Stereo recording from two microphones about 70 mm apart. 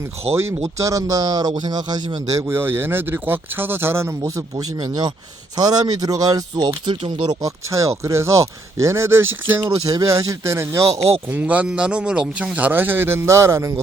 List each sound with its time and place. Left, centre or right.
0.3 s speech: right
2.5 s speech: right
4.8 s speech: right
5.5 s speech: right
7.3 s speech: right
9.6 s speech: right
11.3 s speech: right
12.5 s speech: right